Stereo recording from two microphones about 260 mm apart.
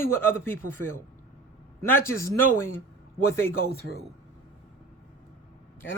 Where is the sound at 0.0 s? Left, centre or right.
Centre.